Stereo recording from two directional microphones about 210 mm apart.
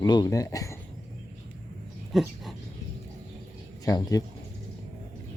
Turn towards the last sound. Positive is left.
turn(degrees=15)  # may be behind; listen again after turning